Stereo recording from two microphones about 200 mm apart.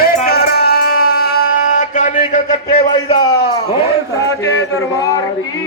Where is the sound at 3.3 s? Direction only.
55° left (ahead or behind).